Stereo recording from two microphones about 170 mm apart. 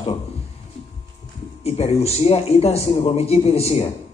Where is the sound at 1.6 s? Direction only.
35° left (ahead or behind).